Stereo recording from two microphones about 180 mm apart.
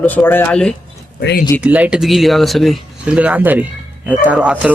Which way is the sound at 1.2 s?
65° left (ahead or behind).